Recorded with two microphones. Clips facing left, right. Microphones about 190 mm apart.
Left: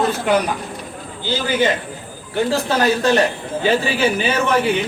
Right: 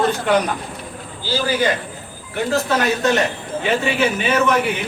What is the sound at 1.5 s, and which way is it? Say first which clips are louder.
A man's voice: left 2 dB; 25° left (ahead or behind).